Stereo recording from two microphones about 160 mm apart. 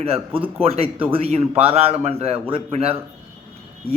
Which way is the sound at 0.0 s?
35° right (ahead or behind).